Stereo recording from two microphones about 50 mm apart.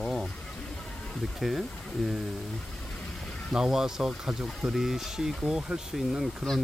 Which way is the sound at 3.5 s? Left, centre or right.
Centre.